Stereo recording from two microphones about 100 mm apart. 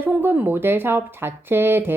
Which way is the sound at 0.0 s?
20° right (ahead or behind).